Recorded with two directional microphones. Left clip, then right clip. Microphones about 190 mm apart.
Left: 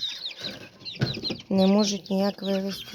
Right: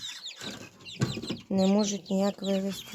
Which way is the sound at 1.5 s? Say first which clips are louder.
Left 4 dB; 10° left (ahead or behind).